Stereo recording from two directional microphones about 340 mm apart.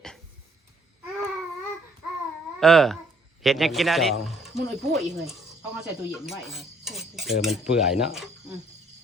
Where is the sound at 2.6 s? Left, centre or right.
Centre.